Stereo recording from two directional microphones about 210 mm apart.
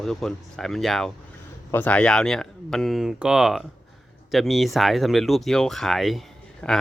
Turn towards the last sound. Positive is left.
turn(degrees=10)  # may be behind; listen again after turning